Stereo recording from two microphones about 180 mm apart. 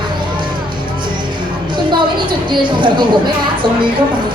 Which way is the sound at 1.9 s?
25° right (ahead or behind).